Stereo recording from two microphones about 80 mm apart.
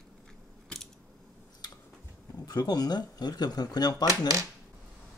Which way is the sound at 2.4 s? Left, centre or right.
Left.